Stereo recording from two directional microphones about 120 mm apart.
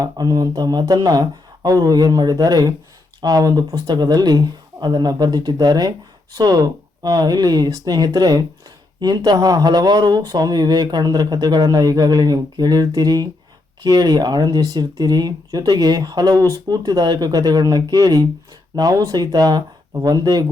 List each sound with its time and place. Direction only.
0.0 s speech: 30° right (ahead or behind)